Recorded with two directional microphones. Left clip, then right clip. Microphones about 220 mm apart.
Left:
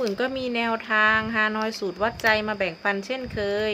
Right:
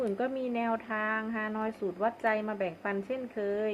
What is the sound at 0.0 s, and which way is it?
A woman's voice, 20° left (ahead or behind).